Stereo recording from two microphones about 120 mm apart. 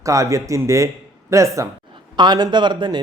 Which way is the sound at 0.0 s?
30° right (ahead or behind).